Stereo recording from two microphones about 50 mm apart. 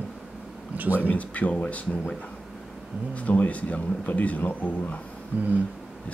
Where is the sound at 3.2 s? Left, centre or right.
Left.